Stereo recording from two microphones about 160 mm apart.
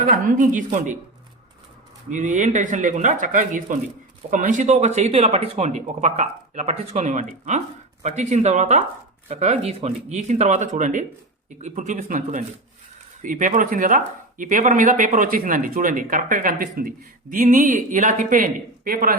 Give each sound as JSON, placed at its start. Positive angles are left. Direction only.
{"t": 0.0, "sound": "speech", "side_deg": -55}
{"t": 2.0, "sound": "speech", "side_deg": -50}